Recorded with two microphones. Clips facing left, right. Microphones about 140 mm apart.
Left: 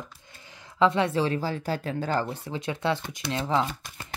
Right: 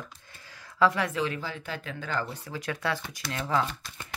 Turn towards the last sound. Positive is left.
turn(degrees=25)  # may be behind; listen again after turning